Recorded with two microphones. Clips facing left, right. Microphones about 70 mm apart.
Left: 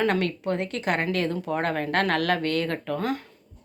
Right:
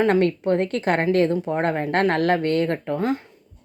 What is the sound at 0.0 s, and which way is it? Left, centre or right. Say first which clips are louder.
Speech: right 6 dB; right.